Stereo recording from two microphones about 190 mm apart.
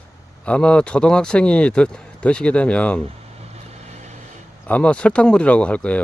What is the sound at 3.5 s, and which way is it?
Vehicle, 35° right (ahead or behind).